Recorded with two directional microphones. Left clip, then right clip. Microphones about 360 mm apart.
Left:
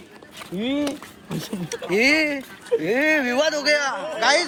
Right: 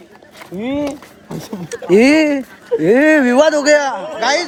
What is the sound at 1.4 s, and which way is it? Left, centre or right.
A man's voice, right.